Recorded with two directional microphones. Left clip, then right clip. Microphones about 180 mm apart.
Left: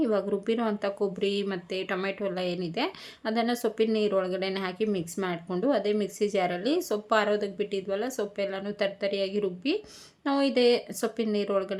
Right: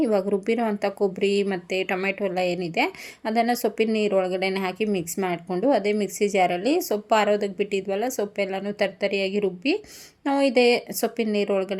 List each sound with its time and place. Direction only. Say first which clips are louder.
0.0 s a woman's voice: right 5 dB; 20° right (ahead or behind)